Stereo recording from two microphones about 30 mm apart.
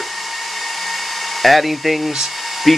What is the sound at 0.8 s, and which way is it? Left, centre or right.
Hair dryer, centre.